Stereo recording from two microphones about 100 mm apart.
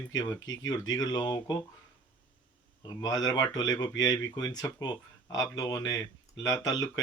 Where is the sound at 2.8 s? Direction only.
45° left (ahead or behind).